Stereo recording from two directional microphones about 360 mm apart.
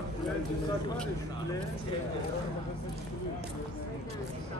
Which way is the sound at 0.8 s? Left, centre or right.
Centre.